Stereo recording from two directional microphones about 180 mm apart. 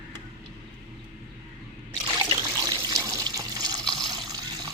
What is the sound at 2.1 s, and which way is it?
Water, 20° right (ahead or behind).